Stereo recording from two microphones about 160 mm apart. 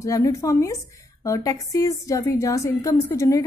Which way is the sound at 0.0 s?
20° left (ahead or behind).